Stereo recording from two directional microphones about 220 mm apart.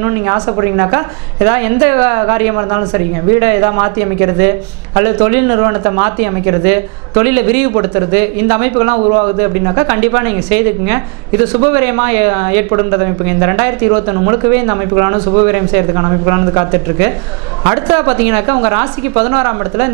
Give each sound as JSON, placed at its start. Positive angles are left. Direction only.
{"t": 0.0, "sound": "speech", "side_deg": -20}